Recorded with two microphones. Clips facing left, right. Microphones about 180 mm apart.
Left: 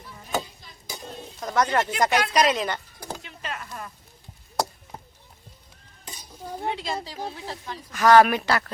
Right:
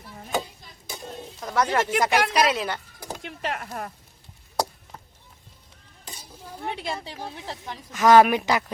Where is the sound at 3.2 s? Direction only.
70° right (ahead or behind).